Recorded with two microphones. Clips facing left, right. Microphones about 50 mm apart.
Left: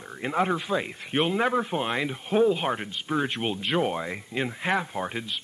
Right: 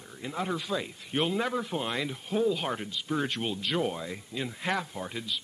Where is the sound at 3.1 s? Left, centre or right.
Left.